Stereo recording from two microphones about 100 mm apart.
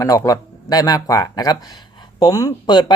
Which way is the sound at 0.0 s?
35° left (ahead or behind).